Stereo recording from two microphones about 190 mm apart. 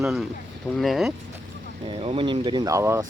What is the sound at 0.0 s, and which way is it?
Speech, centre (ahead or behind).